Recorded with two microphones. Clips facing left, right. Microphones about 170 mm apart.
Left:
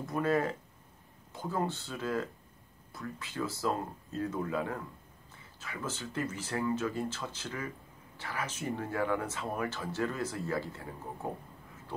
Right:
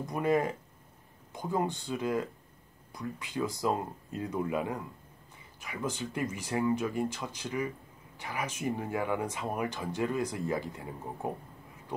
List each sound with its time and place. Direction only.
0.0 s speech: 15° right (ahead or behind)